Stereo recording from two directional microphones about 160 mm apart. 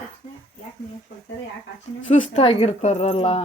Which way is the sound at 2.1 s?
45° left (ahead or behind).